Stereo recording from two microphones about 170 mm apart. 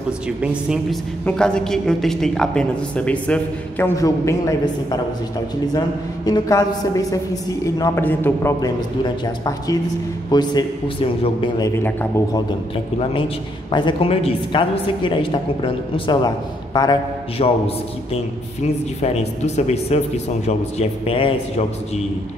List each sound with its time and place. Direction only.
0.4 s speech: 5° right (ahead or behind)
1.2 s speech: 5° left (ahead or behind)
5.7 s a woman's voice: 25° left (ahead or behind)
10.3 s a woman's voice: 25° left (ahead or behind)
13.7 s a woman's voice: 25° left (ahead or behind)
18.9 s a man's voice: 40° left (ahead or behind)